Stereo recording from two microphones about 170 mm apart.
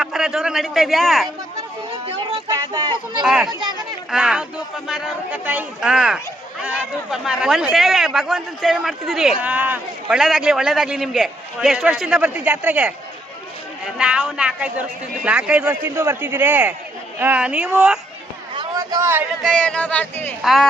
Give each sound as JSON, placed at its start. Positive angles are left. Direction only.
{"t": 0.0, "sound": "a man's voice", "side_deg": -5}
{"t": 1.9, "sound": "a sound", "side_deg": -30}
{"t": 3.2, "sound": "speech", "side_deg": -5}
{"t": 3.5, "sound": "speech", "side_deg": -25}
{"t": 4.1, "sound": "speech", "side_deg": -5}
{"t": 14.0, "sound": "a man's voice", "side_deg": -5}
{"t": 18.5, "sound": "a sound", "side_deg": -25}
{"t": 19.4, "sound": "speech", "side_deg": 0}
{"t": 20.4, "sound": "speech", "side_deg": 0}